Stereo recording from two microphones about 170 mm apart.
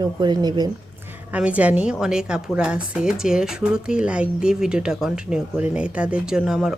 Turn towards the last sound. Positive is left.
turn(degrees=-5)  # may be behind; listen again after turning